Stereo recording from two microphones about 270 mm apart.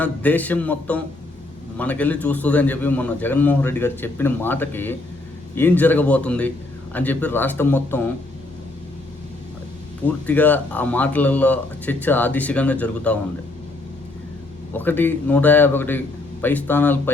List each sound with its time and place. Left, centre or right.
0.0 s a man's voice: centre
10.1 s a man's voice: centre
14.7 s a man's voice: centre